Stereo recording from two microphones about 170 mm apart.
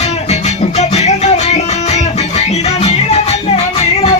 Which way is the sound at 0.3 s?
40° left (ahead or behind).